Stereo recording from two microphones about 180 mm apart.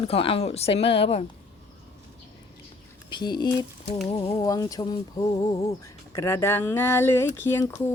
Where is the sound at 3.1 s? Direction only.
25° left (ahead or behind).